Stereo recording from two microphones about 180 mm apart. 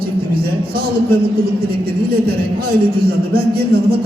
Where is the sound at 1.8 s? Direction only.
60° right (ahead or behind).